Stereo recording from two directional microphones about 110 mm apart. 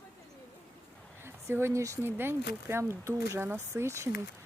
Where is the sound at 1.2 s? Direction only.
20° right (ahead or behind).